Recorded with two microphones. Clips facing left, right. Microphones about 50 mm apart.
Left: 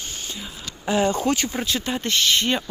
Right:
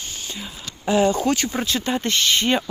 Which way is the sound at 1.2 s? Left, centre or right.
Centre.